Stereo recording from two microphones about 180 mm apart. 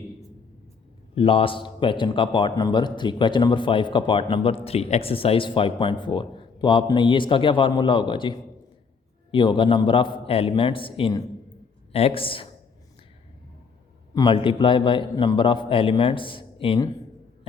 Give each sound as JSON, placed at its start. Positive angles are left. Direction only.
{"t": 1.1, "sound": "a man's voice", "side_deg": 30}
{"t": 14.1, "sound": "a man's voice", "side_deg": 20}